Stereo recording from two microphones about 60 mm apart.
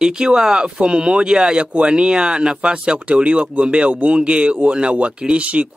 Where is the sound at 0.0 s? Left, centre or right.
Centre.